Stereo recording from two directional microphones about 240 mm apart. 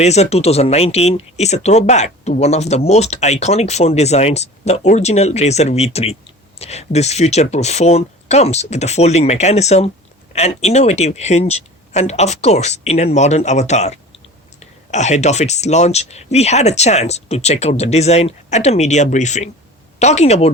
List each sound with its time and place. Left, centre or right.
0.0 s speech: left